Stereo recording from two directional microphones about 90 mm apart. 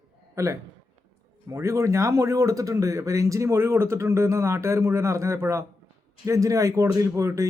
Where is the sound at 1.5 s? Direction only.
35° right (ahead or behind).